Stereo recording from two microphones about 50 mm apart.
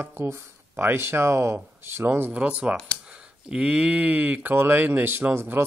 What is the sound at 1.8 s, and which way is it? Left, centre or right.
Speech, right.